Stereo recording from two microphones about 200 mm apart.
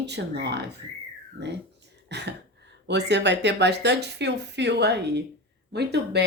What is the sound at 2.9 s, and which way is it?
Speech, 60° right (ahead or behind).